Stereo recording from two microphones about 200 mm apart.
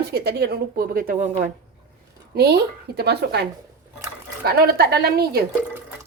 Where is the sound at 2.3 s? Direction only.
55° right (ahead or behind).